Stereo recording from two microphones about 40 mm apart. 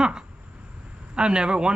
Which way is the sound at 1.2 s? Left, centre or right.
Right.